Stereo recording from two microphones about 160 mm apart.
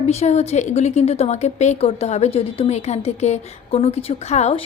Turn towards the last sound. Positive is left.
turn(degrees=45)  # may be behind; listen again after turning